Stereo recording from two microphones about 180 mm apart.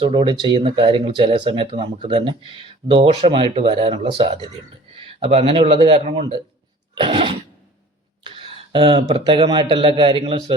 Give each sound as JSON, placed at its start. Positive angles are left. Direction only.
{"t": 0.0, "sound": "speech", "side_deg": -30}
{"t": 6.1, "sound": "speech", "side_deg": -25}
{"t": 6.9, "sound": "a sound", "side_deg": -30}
{"t": 9.0, "sound": "speech", "side_deg": -25}